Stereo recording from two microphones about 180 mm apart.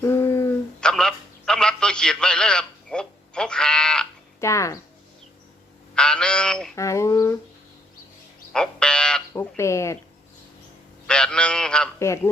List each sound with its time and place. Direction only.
0.0 s a sound: 15° left (ahead or behind)
0.8 s a sound: 5° left (ahead or behind)
4.4 s speech: 15° left (ahead or behind)
5.9 s a man's voice: 5° left (ahead or behind)
6.7 s speech: 15° left (ahead or behind)
8.5 s frog: 5° left (ahead or behind)
9.3 s speech: 15° left (ahead or behind)
11.0 s a man's voice: 5° left (ahead or behind)
11.9 s speech: 15° left (ahead or behind)